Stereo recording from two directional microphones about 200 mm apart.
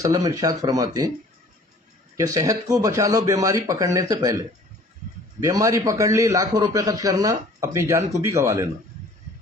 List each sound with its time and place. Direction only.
0.0 s a man's voice: 15° right (ahead or behind)
2.1 s a man's voice: 15° right (ahead or behind)